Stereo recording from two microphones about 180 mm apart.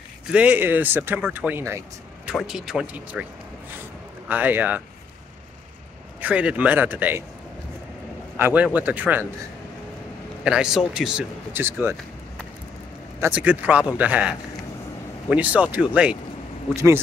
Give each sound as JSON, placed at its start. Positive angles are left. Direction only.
{"t": 0.3, "sound": "a man's voice", "side_deg": -10}
{"t": 2.2, "sound": "speech", "side_deg": 0}
{"t": 4.3, "sound": "a man's voice", "side_deg": -10}
{"t": 6.2, "sound": "a man's voice", "side_deg": -5}
{"t": 8.4, "sound": "a man's voice", "side_deg": -10}
{"t": 10.4, "sound": "speech", "side_deg": -5}
{"t": 13.2, "sound": "a man's voice", "side_deg": -10}